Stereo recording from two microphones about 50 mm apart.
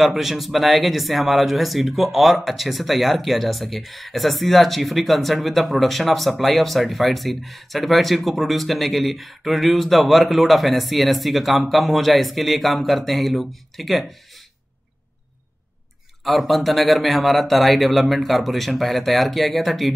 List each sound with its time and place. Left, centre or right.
0.0 s speech: centre
16.3 s speech: centre